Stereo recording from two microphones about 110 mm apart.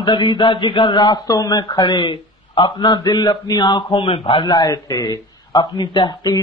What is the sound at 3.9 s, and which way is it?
Speech, 55° left (ahead or behind).